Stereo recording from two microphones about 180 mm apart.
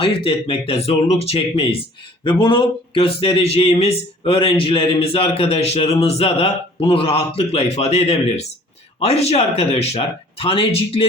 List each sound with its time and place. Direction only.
0.0 s speech: 30° left (ahead or behind)